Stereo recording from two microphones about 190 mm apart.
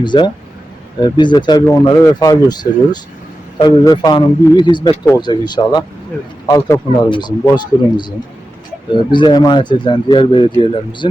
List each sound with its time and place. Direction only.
0.0 s speech: 25° left (ahead or behind)